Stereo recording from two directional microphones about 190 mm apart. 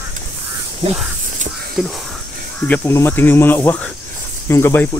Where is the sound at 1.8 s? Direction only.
Centre (ahead or behind).